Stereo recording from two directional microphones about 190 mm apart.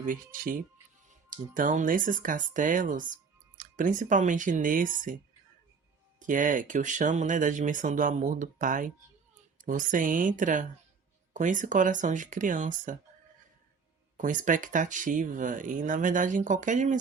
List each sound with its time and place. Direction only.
0.0 s speech: 45° right (ahead or behind)
6.1 s speech: 45° right (ahead or behind)
14.2 s speech: 45° right (ahead or behind)